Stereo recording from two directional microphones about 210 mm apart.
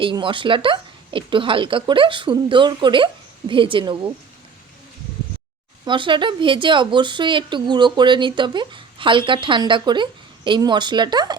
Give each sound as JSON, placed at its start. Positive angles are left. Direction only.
{"t": 0.0, "sound": "a woman's voice", "side_deg": -25}
{"t": 5.8, "sound": "a woman's voice", "side_deg": -20}